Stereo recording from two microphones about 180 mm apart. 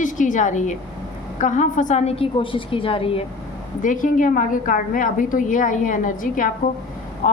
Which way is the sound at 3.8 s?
45° left (ahead or behind).